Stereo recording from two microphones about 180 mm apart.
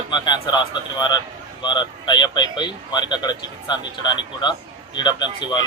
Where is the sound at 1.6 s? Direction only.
25° left (ahead or behind).